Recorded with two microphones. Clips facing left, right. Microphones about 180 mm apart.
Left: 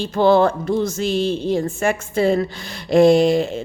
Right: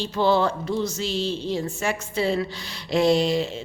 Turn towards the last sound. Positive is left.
turn(degrees=50)  # may be behind; listen again after turning